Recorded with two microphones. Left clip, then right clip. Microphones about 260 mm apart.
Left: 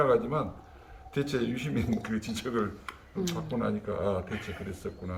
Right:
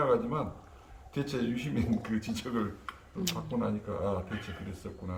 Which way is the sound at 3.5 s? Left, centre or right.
Centre.